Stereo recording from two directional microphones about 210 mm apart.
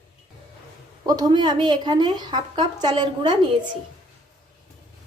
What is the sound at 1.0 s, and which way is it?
A woman's voice, 20° right (ahead or behind).